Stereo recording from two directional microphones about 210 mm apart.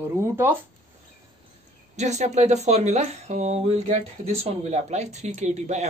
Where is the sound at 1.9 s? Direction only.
35° right (ahead or behind).